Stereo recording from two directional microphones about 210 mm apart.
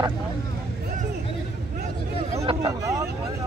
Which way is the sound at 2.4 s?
20° right (ahead or behind).